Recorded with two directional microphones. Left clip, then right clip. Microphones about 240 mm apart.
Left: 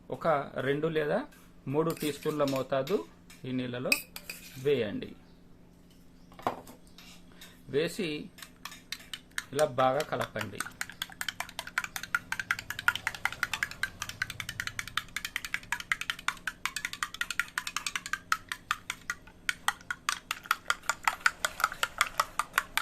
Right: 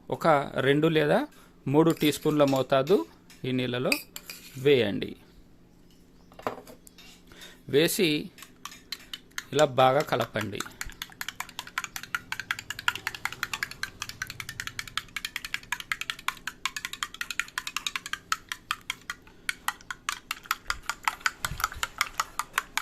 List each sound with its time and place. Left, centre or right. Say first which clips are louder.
0.1 s speech: right 6 dB; right
7.7 s speech: right 8 dB; right
8.6 s a sound: right 2 dB; centre
9.5 s speech: right 5 dB; right
10.6 s typing: even; centre